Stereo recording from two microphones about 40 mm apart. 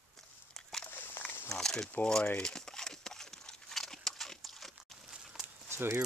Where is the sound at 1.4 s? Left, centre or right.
Centre.